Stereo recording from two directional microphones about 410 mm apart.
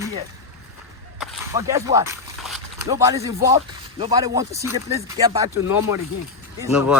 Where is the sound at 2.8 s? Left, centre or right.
Centre.